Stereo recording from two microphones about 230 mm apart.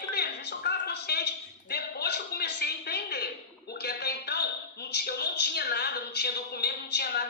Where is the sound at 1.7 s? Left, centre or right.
Left.